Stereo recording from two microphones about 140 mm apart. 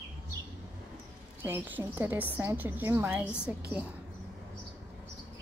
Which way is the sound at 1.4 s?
15° right (ahead or behind).